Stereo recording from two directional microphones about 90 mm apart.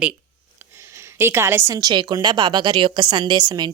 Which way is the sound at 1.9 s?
55° right (ahead or behind).